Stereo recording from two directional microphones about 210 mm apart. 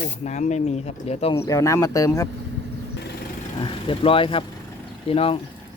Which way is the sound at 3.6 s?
25° left (ahead or behind).